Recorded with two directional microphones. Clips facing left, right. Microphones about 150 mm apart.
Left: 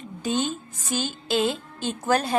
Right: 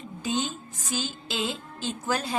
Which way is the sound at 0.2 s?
55° left (ahead or behind).